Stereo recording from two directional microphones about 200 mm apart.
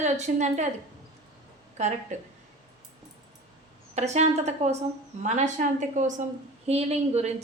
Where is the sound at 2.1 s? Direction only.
35° right (ahead or behind).